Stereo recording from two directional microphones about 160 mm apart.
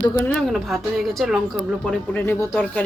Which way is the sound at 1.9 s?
15° left (ahead or behind).